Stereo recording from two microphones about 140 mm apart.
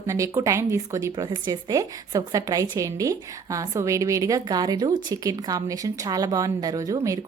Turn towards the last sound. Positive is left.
turn(degrees=-25)  # may be behind; listen again after turning